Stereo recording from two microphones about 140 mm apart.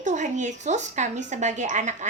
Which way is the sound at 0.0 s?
60° right (ahead or behind).